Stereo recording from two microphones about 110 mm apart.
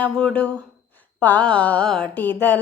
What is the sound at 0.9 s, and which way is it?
Speech, 15° left (ahead or behind).